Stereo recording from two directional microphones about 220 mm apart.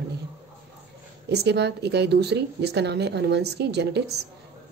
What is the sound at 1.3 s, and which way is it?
A woman's voice, 50° right (ahead or behind).